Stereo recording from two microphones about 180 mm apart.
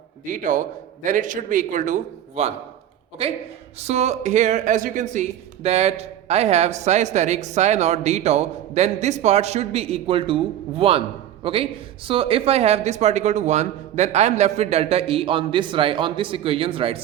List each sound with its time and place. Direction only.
0.3 s a man's voice: 45° right (ahead or behind)
3.8 s speech: 35° right (ahead or behind)